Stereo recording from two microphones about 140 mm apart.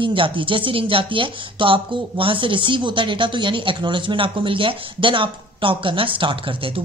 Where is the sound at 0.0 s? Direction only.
35° right (ahead or behind).